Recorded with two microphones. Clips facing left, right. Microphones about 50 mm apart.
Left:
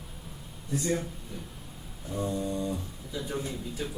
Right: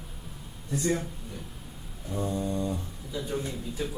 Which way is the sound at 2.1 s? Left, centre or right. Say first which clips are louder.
Even; centre.